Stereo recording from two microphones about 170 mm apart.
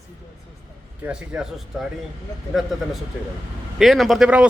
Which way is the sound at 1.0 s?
5° right (ahead or behind).